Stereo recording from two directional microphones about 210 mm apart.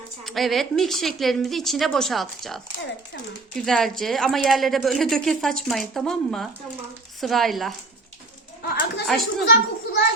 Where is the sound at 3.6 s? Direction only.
Centre (ahead or behind).